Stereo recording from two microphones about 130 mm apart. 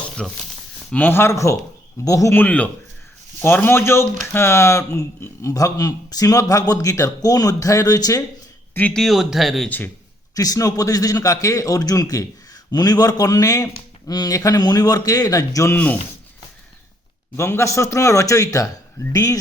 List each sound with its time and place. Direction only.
0.2 s a man's voice: 5° left (ahead or behind); by 2.4 s 25° left (ahead or behind)
2.4 s a man's voice: 10° left (ahead or behind); by 8.2 s 30° left (ahead or behind)
8.7 s speech: 10° left (ahead or behind)
9.6 s speech: 15° left (ahead or behind)
10.3 s a man's voice: 25° left (ahead or behind)
17.3 s a man's voice: 20° left (ahead or behind)